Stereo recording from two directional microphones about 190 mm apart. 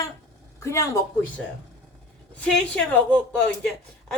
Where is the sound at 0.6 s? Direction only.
15° left (ahead or behind).